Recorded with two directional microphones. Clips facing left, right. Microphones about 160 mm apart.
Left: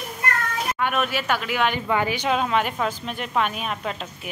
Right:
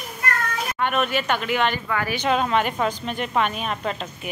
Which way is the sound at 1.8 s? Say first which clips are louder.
Left 1 dB; 20° left (ahead or behind).